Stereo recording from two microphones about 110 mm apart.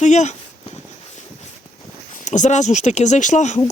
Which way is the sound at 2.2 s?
90° left.